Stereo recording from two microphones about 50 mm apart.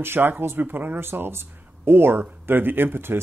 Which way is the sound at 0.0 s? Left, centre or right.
Right.